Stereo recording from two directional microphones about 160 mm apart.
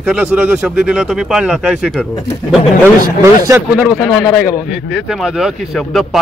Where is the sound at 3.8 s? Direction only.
Centre (ahead or behind).